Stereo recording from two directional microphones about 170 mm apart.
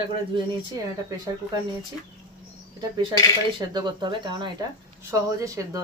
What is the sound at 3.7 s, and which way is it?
Speech, 25° right (ahead or behind).